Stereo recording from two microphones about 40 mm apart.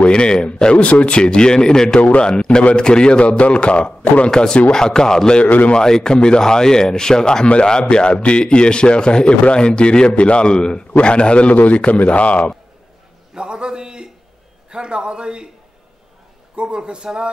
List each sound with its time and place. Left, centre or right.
0.1 s speech: left
2.0 s a man's voice: left
2.2 s speech: left
4.3 s speech: centre
5.4 s a man's voice: left
5.8 s speech: centre
7.9 s a man's voice: left
13.3 s a sound: right
14.7 s a man's voice: right
16.5 s a man's voice: right